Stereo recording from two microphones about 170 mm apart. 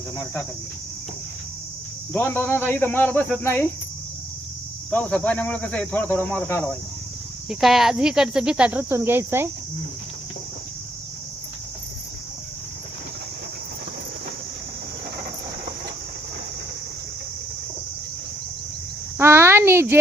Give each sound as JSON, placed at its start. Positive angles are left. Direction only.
{"t": 2.1, "sound": "speech", "side_deg": 10}
{"t": 4.9, "sound": "speech", "side_deg": 5}
{"t": 7.5, "sound": "speech", "side_deg": 0}
{"t": 19.1, "sound": "insect", "side_deg": -15}